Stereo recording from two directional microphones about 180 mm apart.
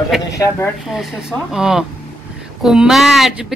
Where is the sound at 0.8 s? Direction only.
Centre (ahead or behind).